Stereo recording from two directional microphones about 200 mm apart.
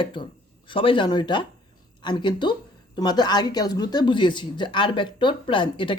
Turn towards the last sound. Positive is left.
turn(degrees=25)  # may be behind; listen again after turning